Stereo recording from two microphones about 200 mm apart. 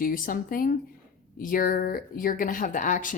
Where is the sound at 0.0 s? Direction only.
45° left (ahead or behind).